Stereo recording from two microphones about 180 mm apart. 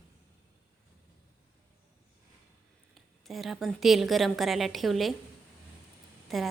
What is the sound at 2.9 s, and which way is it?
A woman's voice, centre (ahead or behind).